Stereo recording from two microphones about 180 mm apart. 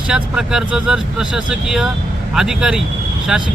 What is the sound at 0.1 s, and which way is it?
Speech, 5° right (ahead or behind).